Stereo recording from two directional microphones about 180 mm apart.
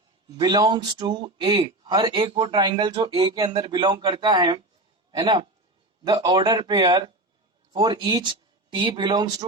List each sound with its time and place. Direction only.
0.3 s speech: 25° right (ahead or behind)